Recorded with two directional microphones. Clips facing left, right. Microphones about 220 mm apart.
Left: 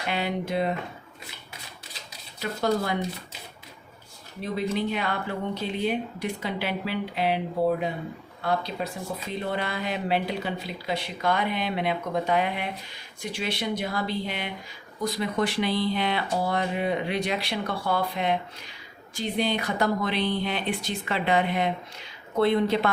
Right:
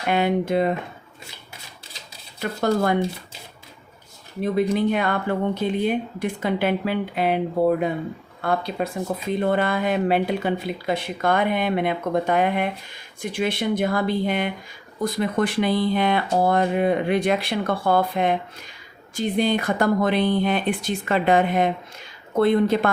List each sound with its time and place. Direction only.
0.1 s speech: 50° right (ahead or behind)
2.4 s speech: 50° right (ahead or behind)
4.4 s speech: 50° right (ahead or behind)